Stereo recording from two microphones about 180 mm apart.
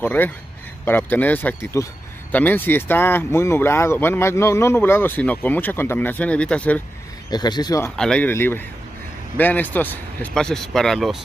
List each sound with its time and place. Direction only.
0.0 s speech: 10° left (ahead or behind)
7.2 s speech: 25° left (ahead or behind)
7.9 s a man's voice: 5° left (ahead or behind)